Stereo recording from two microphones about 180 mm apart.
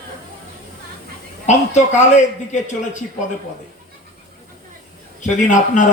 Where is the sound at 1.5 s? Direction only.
40° left (ahead or behind).